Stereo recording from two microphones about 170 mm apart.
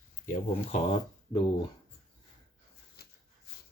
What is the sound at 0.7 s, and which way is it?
Speech, 40° left (ahead or behind).